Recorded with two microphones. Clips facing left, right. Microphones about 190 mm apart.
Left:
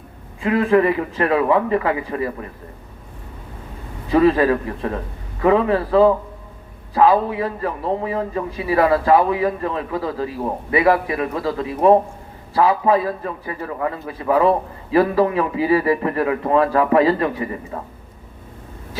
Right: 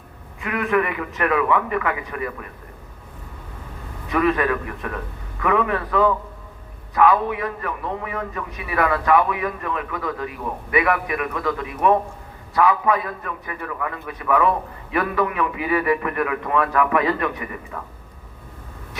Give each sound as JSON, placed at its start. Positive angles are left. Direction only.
{"t": 0.4, "sound": "a man's voice", "side_deg": 30}
{"t": 4.1, "sound": "a man's voice", "side_deg": 30}